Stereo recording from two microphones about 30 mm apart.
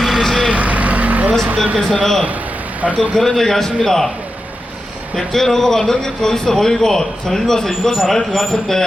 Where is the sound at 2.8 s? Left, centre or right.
Right.